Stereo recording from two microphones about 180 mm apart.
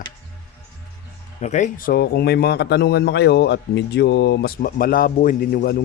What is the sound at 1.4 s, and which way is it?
Speech, 40° left (ahead or behind).